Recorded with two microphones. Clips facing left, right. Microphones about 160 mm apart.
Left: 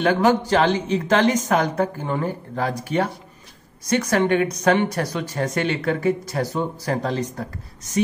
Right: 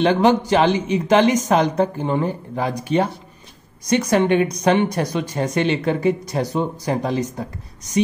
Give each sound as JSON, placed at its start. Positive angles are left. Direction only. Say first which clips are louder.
{"t": 0.0, "sound": "a woman's voice", "louder": "right 2 dB", "side_deg": -20}